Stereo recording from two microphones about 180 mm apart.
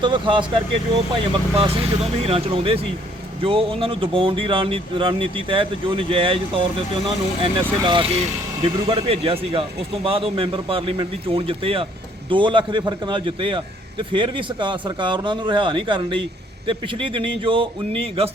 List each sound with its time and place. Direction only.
0.0 s speech: 25° right (ahead or behind)